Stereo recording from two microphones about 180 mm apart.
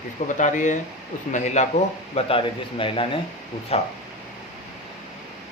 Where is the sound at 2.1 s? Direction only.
30° left (ahead or behind).